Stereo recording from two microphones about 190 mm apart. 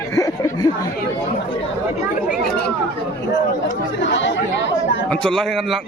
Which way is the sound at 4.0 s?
75° left (ahead or behind).